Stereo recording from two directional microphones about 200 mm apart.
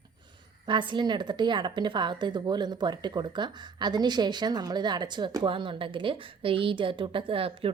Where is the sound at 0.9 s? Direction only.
20° right (ahead or behind).